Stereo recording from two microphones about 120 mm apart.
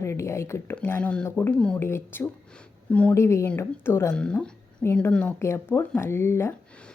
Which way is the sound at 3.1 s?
25° left (ahead or behind).